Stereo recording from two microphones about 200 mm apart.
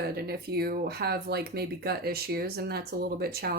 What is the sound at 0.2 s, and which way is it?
Speech, 50° right (ahead or behind).